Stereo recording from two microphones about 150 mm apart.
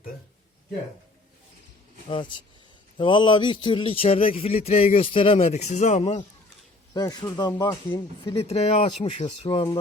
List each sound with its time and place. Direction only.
2.0 s a man's voice: 30° left (ahead or behind); by 6.1 s 50° left (ahead or behind)
6.9 s speech: 25° left (ahead or behind)
8.2 s a man's voice: 40° left (ahead or behind)